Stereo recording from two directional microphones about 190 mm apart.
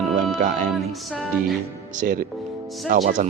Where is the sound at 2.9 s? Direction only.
40° right (ahead or behind).